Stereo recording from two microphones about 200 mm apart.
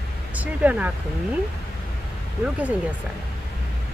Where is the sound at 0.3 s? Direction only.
5° right (ahead or behind).